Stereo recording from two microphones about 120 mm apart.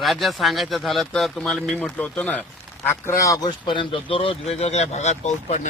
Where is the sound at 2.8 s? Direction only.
25° left (ahead or behind).